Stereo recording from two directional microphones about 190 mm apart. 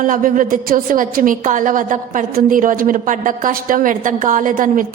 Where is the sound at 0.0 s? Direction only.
45° right (ahead or behind).